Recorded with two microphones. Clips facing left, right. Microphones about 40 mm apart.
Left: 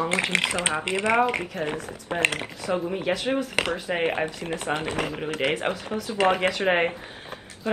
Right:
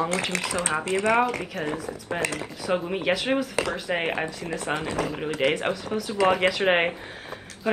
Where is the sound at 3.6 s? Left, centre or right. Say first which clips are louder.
Left 1 dB; left.